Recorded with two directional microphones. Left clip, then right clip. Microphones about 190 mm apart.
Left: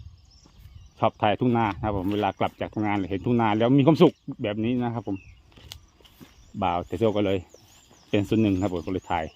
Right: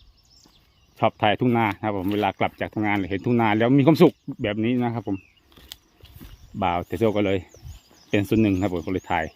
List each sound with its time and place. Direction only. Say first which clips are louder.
0.9 s speech: right 2 dB; 10° right (ahead or behind)
6.6 s speech: right 2 dB; 15° right (ahead or behind)